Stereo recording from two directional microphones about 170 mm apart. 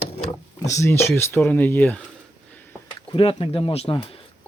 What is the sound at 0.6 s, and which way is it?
Speech, 20° left (ahead or behind).